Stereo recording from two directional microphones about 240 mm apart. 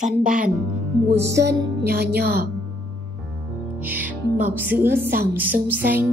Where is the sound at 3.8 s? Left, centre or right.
Centre.